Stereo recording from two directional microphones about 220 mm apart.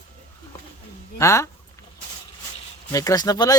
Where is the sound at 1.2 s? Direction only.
15° left (ahead or behind).